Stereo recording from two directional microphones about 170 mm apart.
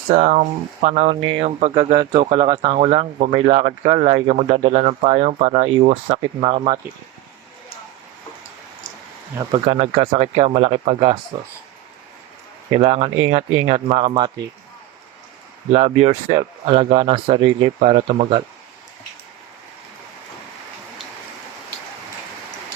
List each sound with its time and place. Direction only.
0.1 s speech: 45° right (ahead or behind)
9.4 s speech: 30° right (ahead or behind)
12.7 s speech: 35° right (ahead or behind)
15.7 s speech: 40° right (ahead or behind)